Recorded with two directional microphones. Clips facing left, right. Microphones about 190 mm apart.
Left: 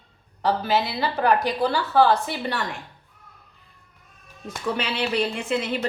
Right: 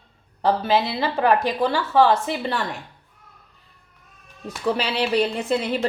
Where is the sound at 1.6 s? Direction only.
25° right (ahead or behind).